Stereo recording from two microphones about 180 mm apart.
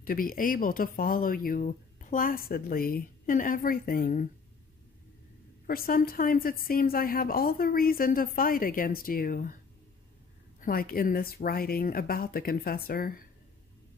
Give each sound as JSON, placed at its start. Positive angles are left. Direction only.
{"t": 0.0, "sound": "speech", "side_deg": 50}
{"t": 5.7, "sound": "speech", "side_deg": 55}
{"t": 10.6, "sound": "speech", "side_deg": 55}